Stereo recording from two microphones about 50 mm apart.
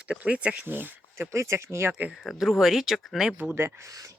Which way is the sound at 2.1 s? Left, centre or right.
Centre.